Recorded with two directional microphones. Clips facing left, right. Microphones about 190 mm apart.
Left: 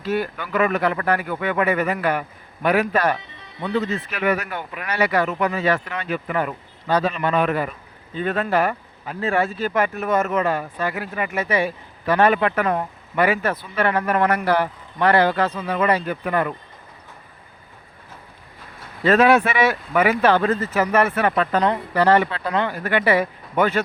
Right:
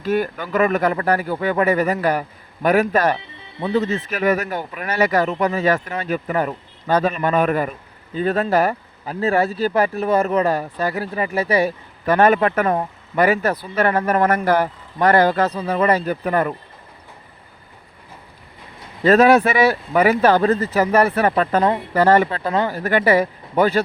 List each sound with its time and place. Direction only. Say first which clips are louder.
0.0 s speech: right 3 dB; 45° right (ahead or behind)
3.6 s speech: right 3 dB; 25° right (ahead or behind)
4.0 s speech: right 3 dB; 45° right (ahead or behind)
19.0 s speech: right 3 dB; 40° right (ahead or behind)
21.9 s speech: right 2 dB; 45° right (ahead or behind)